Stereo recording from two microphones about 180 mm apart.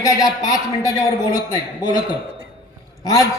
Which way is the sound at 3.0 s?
15° left (ahead or behind).